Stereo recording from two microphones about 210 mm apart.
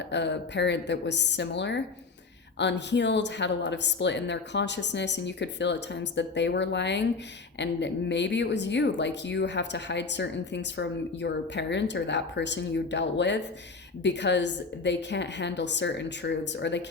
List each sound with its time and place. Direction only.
0.1 s speech: 55° left (ahead or behind)